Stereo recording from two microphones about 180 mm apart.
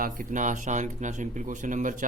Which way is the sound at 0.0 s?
45° right (ahead or behind).